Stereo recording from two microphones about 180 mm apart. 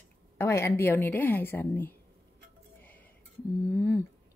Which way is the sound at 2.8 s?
10° left (ahead or behind).